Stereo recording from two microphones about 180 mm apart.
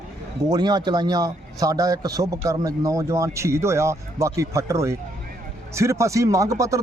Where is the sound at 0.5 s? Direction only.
25° right (ahead or behind).